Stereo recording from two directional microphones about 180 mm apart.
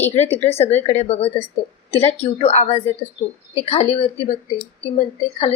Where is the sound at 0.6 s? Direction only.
35° left (ahead or behind).